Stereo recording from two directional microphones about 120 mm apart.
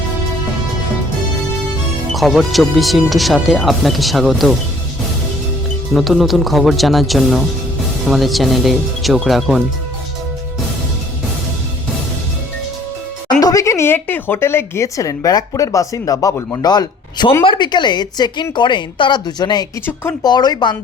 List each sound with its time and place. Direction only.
2.1 s speech: centre (ahead or behind)
5.9 s speech: centre (ahead or behind)
13.4 s speech: 30° left (ahead or behind)